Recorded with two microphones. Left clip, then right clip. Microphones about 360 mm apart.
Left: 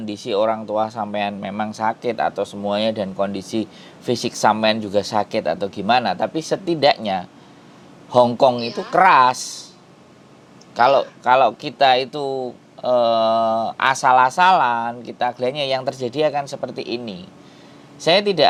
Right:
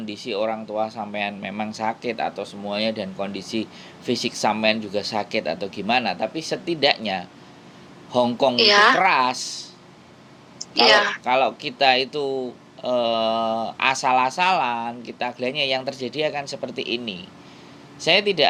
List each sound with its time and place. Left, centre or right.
0.0 s speech: left
10.8 s speech: right
11.2 s speech: left
18.0 s speech: left